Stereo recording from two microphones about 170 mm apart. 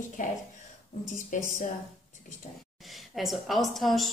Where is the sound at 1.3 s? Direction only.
50° left (ahead or behind).